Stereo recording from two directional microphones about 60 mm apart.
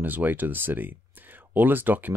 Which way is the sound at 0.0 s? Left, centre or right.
Right.